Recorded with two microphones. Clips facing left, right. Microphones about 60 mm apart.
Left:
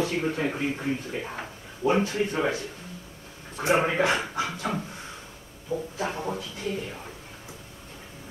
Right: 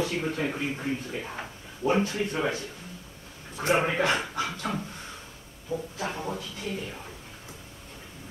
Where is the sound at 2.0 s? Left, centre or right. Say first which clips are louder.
Left 2 dB; left.